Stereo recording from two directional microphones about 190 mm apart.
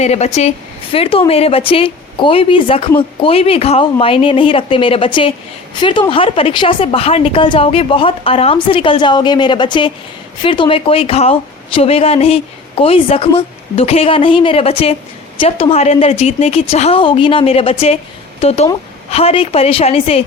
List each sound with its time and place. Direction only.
0.0 s a woman's voice: 35° left (ahead or behind)